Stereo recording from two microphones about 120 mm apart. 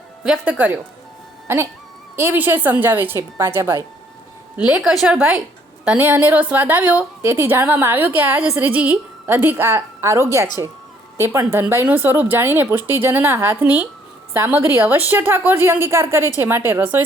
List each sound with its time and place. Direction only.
0.4 s a woman's voice: 15° right (ahead or behind)
4.8 s a woman's voice: centre (ahead or behind)